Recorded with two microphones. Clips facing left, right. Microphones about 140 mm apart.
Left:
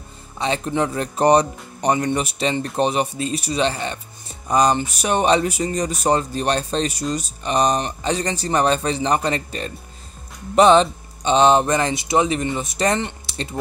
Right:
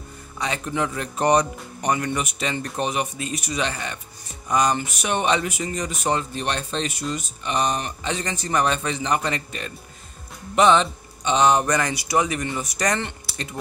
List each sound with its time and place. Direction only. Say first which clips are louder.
0.4 s speech: left 4 dB; 30° left (ahead or behind)